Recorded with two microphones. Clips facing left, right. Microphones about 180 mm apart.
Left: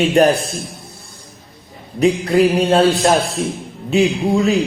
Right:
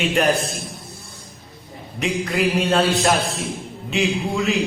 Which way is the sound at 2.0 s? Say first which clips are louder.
Left 8 dB; 35° left (ahead or behind).